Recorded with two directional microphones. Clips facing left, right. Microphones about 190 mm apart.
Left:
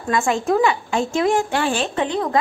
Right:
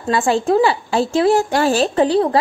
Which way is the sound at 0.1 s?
30° right (ahead or behind).